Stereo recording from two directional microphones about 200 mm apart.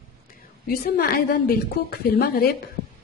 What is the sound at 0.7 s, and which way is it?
A woman's voice, 50° left (ahead or behind).